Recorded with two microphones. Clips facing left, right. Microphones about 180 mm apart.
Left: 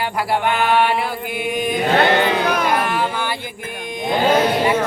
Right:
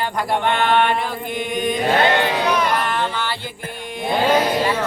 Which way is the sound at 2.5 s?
50° left (ahead or behind).